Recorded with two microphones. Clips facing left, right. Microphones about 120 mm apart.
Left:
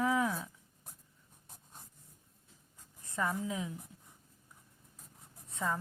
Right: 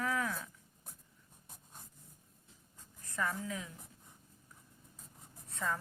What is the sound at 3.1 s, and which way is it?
Speech, 20° left (ahead or behind).